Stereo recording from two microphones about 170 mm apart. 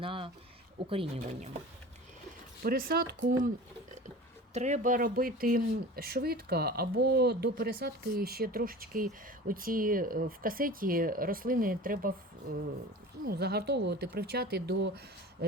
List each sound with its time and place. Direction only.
0.0 s a sound: 30° right (ahead or behind)
0.9 s speech: 35° right (ahead or behind)
2.6 s speech: 60° right (ahead or behind)
4.5 s speech: 45° right (ahead or behind); by 15.4 s 70° right (ahead or behind)